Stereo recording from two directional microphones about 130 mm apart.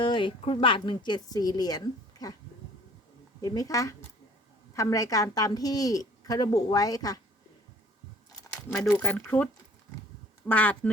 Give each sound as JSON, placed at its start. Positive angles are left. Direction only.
{"t": 0.0, "sound": "speech", "side_deg": 40}
{"t": 3.4, "sound": "a woman's voice", "side_deg": 30}
{"t": 8.3, "sound": "a sound", "side_deg": 30}
{"t": 8.9, "sound": "speech", "side_deg": 15}